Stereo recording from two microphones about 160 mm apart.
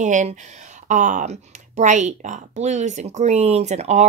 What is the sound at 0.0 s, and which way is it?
Speech, 50° right (ahead or behind).